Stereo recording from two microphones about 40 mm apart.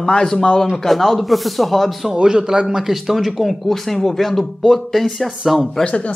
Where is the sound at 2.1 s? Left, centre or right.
Centre.